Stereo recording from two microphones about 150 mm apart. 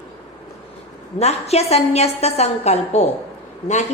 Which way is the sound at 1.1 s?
45° left (ahead or behind).